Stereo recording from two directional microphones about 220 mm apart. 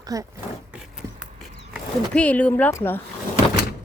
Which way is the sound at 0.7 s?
5° right (ahead or behind).